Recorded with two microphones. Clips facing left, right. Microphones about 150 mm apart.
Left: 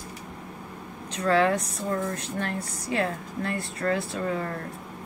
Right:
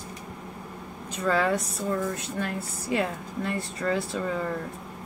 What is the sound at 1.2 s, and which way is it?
Speech, centre (ahead or behind).